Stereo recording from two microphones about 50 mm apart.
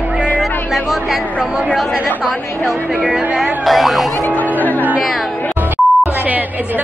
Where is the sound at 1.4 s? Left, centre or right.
Centre.